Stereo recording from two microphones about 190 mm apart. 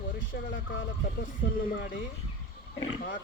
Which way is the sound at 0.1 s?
55° left (ahead or behind).